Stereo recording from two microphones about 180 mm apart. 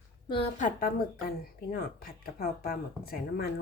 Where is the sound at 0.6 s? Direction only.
50° left (ahead or behind).